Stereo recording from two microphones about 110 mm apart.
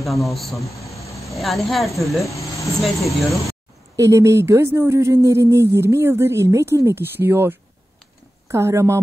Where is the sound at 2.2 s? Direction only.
30° left (ahead or behind).